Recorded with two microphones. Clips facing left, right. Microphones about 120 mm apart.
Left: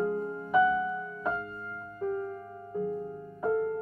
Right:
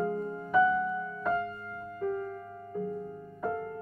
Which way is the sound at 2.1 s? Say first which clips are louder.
Left 1 dB; 20° left (ahead or behind).